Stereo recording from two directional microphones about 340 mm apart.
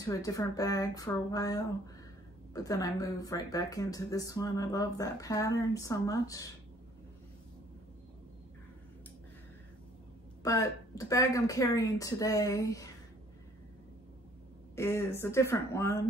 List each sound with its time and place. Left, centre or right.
0.0 s speech: centre
10.4 s speech: centre
14.8 s speech: centre